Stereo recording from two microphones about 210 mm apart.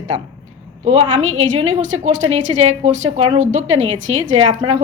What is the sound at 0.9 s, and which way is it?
A woman's voice, 35° right (ahead or behind).